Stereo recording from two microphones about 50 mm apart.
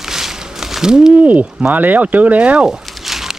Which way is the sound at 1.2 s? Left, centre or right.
Right.